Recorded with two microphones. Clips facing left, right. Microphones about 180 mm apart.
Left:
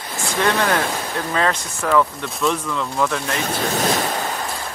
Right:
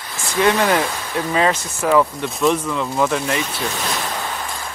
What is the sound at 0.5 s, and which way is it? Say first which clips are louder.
Speech: right 3 dB; 5° right (ahead or behind).